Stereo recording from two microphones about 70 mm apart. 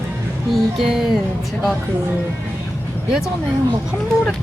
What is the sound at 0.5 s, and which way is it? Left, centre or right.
Music, centre.